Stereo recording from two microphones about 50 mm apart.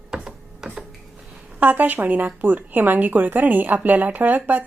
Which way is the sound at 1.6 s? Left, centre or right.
Right.